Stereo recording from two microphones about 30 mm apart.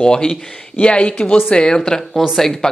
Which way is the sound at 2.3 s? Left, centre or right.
Centre.